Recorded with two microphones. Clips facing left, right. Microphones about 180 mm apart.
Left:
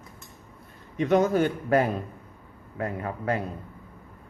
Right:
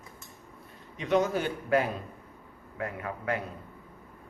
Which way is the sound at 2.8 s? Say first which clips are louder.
Left 4 dB; 35° left (ahead or behind).